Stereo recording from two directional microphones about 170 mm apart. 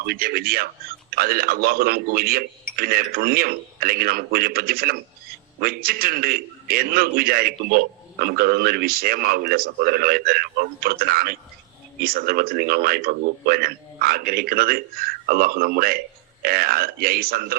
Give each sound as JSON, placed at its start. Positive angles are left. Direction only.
{"t": 0.0, "sound": "a man's voice", "side_deg": -65}